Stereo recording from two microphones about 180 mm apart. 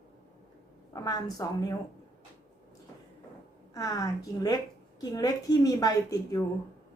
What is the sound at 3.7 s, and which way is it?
A woman's voice, 20° left (ahead or behind).